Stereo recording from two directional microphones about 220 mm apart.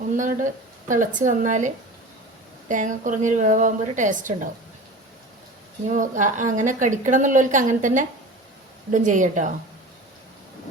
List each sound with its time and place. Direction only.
0.2 s a woman's voice: 35° right (ahead or behind)
5.9 s a woman's voice: 35° right (ahead or behind)